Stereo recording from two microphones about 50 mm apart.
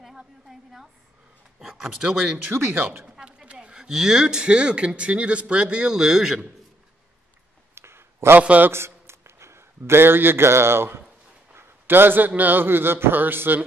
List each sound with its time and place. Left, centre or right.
1.6 s speech: centre
2.7 s speech: right
3.2 s speech: right
7.7 s a sound: right
8.4 s speech: right
8.7 s a man's voice: right
11.5 s a sound: right
12.4 s speech: right